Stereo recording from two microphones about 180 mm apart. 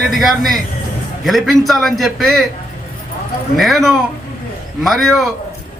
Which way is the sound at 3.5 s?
Centre (ahead or behind).